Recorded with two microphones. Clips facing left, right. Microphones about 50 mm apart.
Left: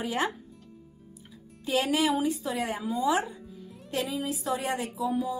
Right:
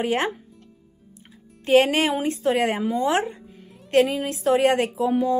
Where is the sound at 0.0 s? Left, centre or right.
Right.